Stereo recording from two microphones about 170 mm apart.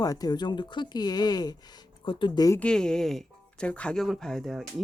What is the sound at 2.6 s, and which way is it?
Speech, 5° left (ahead or behind).